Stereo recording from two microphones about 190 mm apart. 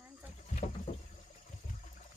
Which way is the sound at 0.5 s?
40° left (ahead or behind).